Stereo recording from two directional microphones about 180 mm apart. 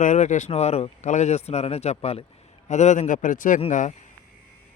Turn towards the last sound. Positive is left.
turn(degrees=40)  # may be behind; listen again after turning